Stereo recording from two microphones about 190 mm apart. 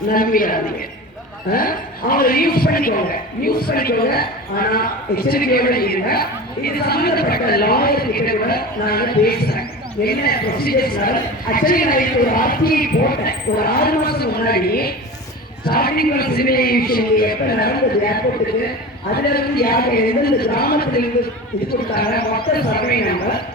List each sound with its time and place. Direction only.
0.1 s a man's voice: 50° left (ahead or behind)